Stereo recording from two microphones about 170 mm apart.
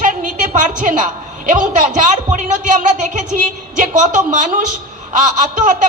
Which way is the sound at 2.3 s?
45° right (ahead or behind).